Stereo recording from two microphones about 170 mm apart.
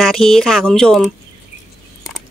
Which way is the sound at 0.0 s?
Centre (ahead or behind).